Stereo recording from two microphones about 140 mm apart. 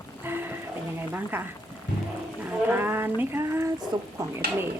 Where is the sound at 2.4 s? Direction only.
15° right (ahead or behind).